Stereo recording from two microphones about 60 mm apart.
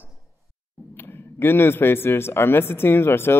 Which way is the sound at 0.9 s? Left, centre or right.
Left.